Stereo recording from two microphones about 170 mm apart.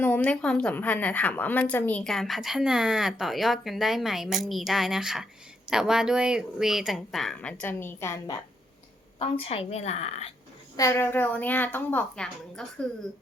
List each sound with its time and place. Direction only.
0.0 s a woman's voice: 10° left (ahead or behind)
9.1 s a woman's voice: 35° left (ahead or behind)
10.8 s a woman's voice: 15° left (ahead or behind)